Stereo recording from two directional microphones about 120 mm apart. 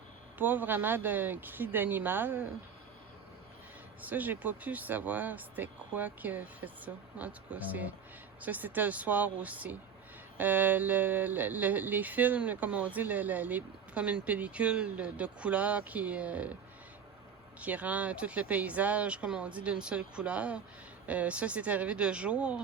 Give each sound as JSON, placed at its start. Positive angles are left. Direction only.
{"t": 0.3, "sound": "speech", "side_deg": -15}
{"t": 4.0, "sound": "speech", "side_deg": -15}
{"t": 17.6, "sound": "speech", "side_deg": -10}